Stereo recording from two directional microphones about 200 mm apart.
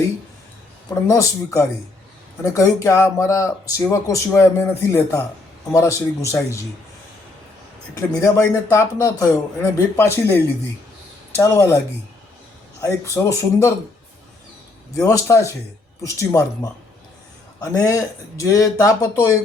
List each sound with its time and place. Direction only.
1.0 s speech: 15° left (ahead or behind)
7.9 s speech: 15° left (ahead or behind)
11.3 s speech: 15° left (ahead or behind)
12.8 s speech: 15° left (ahead or behind)
15.0 s speech: 15° left (ahead or behind)
17.6 s speech: 15° left (ahead or behind)